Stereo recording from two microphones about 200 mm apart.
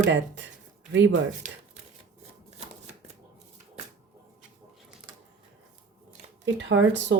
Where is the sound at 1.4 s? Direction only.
40° right (ahead or behind).